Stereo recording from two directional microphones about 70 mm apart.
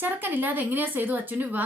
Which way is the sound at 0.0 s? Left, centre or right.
Right.